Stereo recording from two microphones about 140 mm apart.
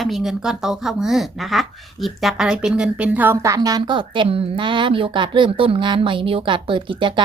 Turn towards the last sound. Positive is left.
turn(degrees=-35)  # may be behind; listen again after turning